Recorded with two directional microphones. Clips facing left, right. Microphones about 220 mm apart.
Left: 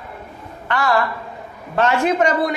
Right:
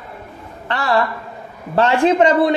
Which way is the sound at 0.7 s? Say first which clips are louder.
Right 1 dB; 35° right (ahead or behind).